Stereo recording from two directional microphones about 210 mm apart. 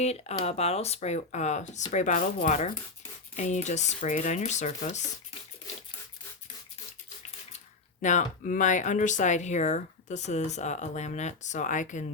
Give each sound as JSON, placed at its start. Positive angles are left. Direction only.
{"t": 0.0, "sound": "speech", "side_deg": 30}
{"t": 8.0, "sound": "speech", "side_deg": 35}